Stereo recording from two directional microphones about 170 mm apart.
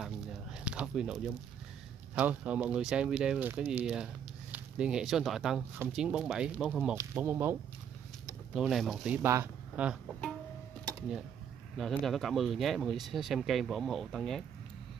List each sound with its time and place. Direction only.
0.0 s a sound: 5° right (ahead or behind)
2.1 s speech: 5° right (ahead or behind)
8.5 s speech: centre (ahead or behind)
11.7 s speech: centre (ahead or behind)